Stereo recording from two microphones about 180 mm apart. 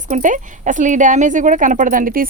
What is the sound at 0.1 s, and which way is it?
Speech, 45° right (ahead or behind).